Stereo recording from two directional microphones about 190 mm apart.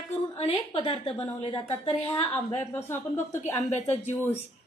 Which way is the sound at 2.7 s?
10° left (ahead or behind).